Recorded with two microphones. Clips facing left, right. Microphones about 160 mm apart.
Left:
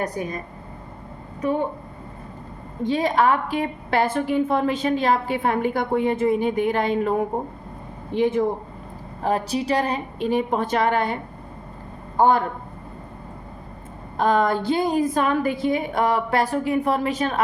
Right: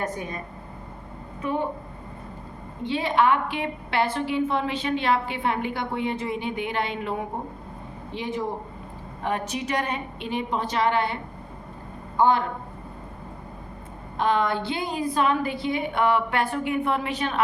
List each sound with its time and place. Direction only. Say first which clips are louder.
0.0 s a woman's voice: left 3 dB; 40° left (ahead or behind)
2.8 s a woman's voice: left 3 dB; 40° left (ahead or behind)
9.2 s a woman's voice: left 5 dB; 35° left (ahead or behind)
14.2 s a woman's voice: left 4 dB; 45° left (ahead or behind)